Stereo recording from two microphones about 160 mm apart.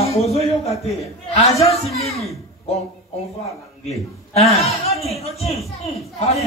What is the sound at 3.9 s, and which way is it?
A man's voice, 40° left (ahead or behind).